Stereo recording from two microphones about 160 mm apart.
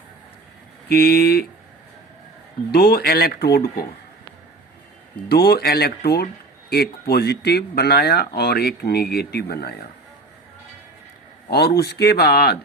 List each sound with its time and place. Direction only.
0.9 s speech: 75° left (ahead or behind)
2.7 s speech: 75° left (ahead or behind)
5.3 s speech: 80° left
11.5 s speech: 80° left